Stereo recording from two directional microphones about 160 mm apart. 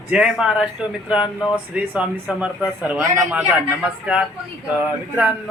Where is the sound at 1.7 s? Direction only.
10° right (ahead or behind).